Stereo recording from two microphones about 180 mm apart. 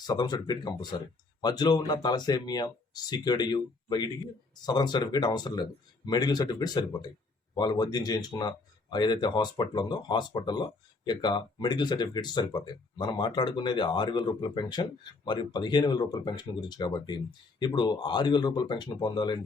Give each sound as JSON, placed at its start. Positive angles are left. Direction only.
{"t": 0.0, "sound": "speech", "side_deg": 25}